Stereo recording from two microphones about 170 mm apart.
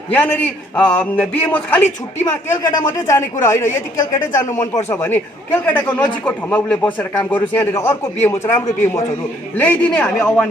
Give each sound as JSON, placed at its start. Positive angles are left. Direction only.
{"t": 0.1, "sound": "a man's voice", "side_deg": 10}
{"t": 2.6, "sound": "a man's voice", "side_deg": 20}